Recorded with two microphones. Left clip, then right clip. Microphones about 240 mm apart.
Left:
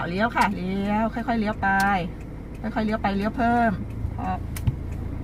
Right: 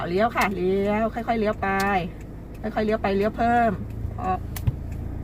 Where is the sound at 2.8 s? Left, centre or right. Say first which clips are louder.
Right 3 dB; right.